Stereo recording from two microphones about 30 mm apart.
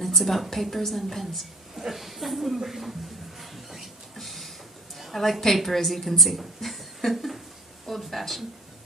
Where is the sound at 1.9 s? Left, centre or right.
Centre.